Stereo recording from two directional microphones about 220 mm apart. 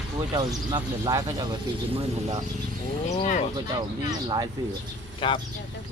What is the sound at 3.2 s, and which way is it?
Speech, 35° left (ahead or behind).